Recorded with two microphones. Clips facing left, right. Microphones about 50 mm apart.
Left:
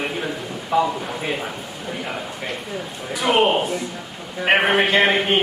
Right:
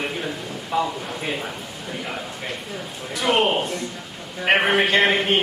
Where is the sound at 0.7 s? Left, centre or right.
Centre.